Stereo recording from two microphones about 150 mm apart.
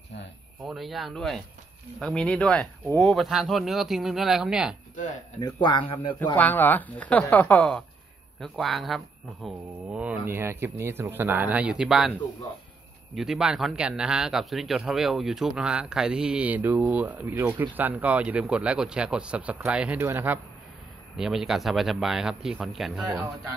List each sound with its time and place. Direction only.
0.7 s speech: centre (ahead or behind)
4.9 s speech: 55° left (ahead or behind)
5.6 s speech: 35° left (ahead or behind)
6.3 s speech: 10° left (ahead or behind); by 12.1 s 5° right (ahead or behind)
13.1 s speech: 5° right (ahead or behind)
21.2 s speech: centre (ahead or behind)